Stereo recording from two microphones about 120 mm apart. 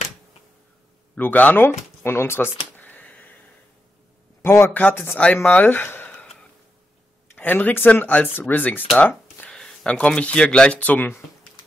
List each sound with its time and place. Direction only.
1.1 s speech: 15° left (ahead or behind)
2.8 s a sound: 15° left (ahead or behind)
4.4 s speech: 20° left (ahead or behind)
7.3 s speech: 15° left (ahead or behind)